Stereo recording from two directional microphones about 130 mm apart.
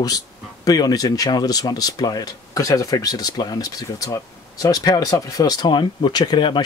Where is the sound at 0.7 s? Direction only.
30° left (ahead or behind).